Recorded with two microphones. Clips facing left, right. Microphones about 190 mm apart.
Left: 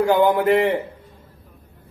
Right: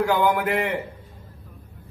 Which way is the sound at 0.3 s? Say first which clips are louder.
Left 6 dB; 25° left (ahead or behind).